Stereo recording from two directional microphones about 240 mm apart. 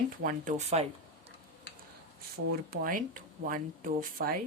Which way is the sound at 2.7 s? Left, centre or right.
Right.